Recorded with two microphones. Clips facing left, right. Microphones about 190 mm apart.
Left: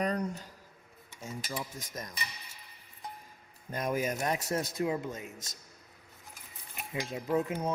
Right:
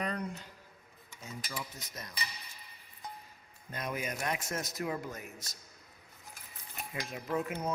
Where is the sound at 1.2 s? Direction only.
45° left (ahead or behind).